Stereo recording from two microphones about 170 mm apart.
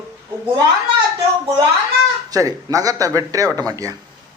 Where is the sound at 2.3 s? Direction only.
20° right (ahead or behind).